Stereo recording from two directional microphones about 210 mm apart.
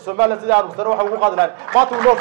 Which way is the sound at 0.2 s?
10° right (ahead or behind).